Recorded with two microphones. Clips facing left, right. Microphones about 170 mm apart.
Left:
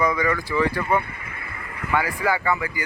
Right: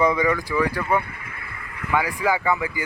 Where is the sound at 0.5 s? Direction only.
10° right (ahead or behind).